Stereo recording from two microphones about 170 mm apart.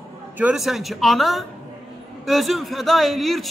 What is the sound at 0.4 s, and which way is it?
A man's voice, 5° right (ahead or behind).